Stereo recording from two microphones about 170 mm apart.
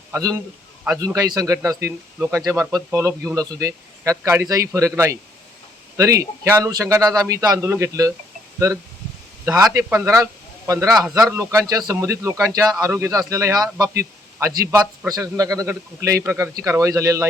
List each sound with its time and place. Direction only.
0.1 s a man's voice: 20° right (ahead or behind)